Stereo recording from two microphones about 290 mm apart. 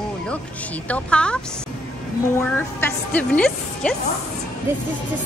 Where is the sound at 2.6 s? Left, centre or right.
Centre.